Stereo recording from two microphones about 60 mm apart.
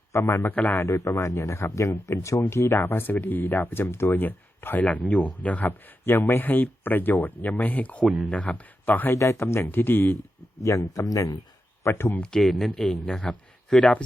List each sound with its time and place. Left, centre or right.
0.1 s a man's voice: left
6.1 s speech: left
8.0 s speech: centre
8.3 s speech: left
9.1 s speech: left
10.6 s speech: left
11.8 s speech: left
12.4 s speech: centre
12.7 s speech: centre